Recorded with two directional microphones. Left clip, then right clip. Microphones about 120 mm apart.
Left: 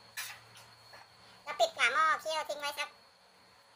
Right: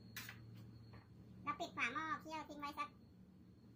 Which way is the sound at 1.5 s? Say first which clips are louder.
Left 17 dB; 70° left (ahead or behind).